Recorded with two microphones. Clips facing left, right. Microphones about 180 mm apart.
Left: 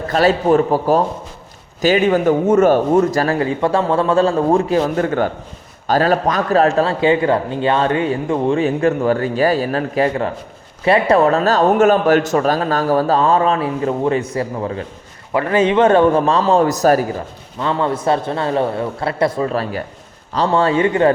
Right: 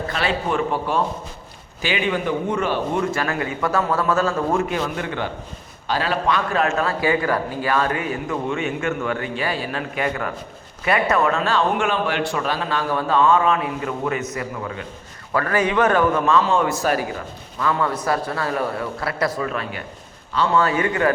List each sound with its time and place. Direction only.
0.1 s a man's voice: 40° left (ahead or behind)
15.3 s a man's voice: 20° left (ahead or behind); by 17.2 s 40° left (ahead or behind)
17.6 s a man's voice: 25° left (ahead or behind)